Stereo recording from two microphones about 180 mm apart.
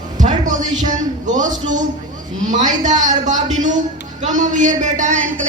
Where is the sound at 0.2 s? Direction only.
45° right (ahead or behind).